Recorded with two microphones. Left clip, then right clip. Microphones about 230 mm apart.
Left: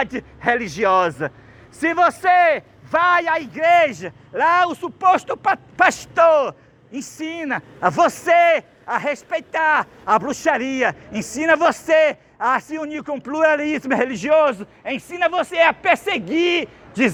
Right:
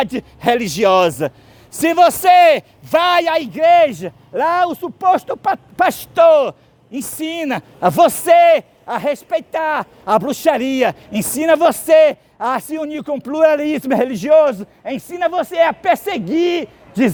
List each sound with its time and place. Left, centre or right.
0.0 s a man's voice: right